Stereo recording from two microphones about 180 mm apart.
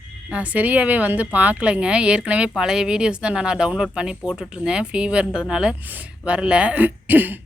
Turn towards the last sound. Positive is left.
turn(degrees=-10)  # may be behind; listen again after turning